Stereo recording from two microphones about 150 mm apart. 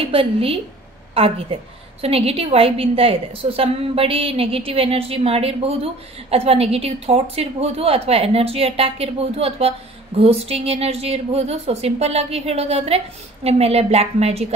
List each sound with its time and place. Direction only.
0.0 s a woman's voice: 40° right (ahead or behind)